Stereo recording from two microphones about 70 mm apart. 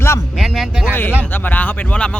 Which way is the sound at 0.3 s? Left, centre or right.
Centre.